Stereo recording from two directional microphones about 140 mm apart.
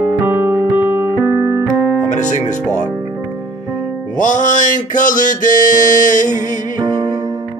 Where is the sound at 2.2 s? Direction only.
60° left (ahead or behind).